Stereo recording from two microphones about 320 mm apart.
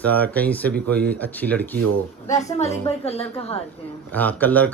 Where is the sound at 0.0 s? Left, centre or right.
Centre.